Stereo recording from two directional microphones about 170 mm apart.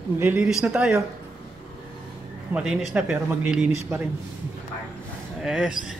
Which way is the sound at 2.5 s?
5° right (ahead or behind).